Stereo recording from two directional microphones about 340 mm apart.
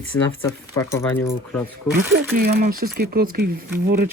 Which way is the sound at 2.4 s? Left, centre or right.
Right.